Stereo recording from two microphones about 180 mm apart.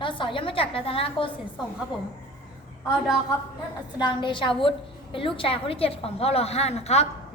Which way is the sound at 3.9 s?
25° left (ahead or behind).